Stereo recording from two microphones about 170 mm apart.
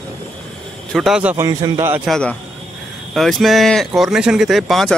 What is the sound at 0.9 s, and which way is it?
A man's voice, 5° right (ahead or behind).